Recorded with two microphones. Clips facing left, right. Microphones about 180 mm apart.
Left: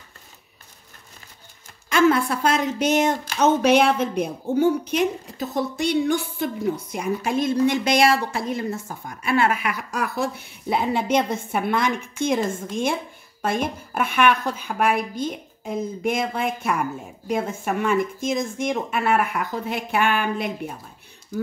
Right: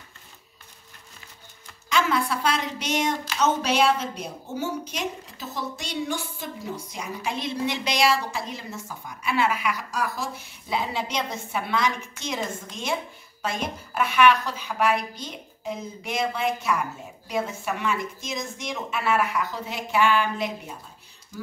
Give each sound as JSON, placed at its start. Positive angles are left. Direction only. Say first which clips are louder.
{"t": 1.9, "sound": "a woman's voice", "louder": "left 6 dB", "side_deg": 50}